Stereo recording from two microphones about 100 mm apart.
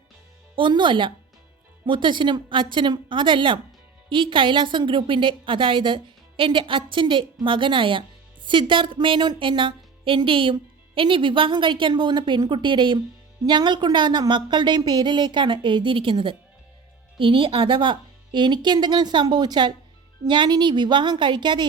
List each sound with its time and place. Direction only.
0.5 s a woman's voice: 55° right (ahead or behind)
13.4 s a woman's voice: 45° right (ahead or behind)